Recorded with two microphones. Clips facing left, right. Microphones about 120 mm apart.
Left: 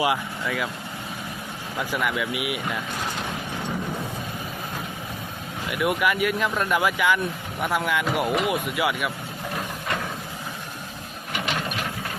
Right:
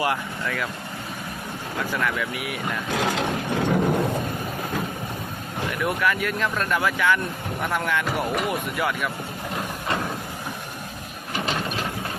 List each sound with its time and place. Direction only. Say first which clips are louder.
0.0 s speech: left 1 dB; 10° left (ahead or behind)
1.9 s speech: left 1 dB; 10° left (ahead or behind)
2.9 s speech: right 6 dB; 90° right
3.7 s vehicle: right 9 dB; 65° right (ahead or behind)
5.7 s speech: left 2 dB; 10° left (ahead or behind)
11.3 s vehicle: right 1 dB; 35° right (ahead or behind)